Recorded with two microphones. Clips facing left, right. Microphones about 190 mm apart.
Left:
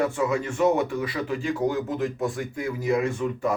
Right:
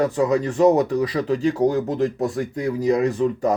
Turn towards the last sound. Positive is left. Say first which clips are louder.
# right 6 dB
turn(degrees=-35)  # may be behind; listen again after turning